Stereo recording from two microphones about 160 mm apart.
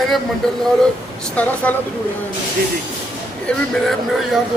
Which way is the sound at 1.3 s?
10° left (ahead or behind).